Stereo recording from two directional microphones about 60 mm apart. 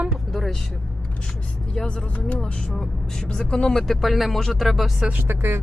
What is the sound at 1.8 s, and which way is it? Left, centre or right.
Speech, centre.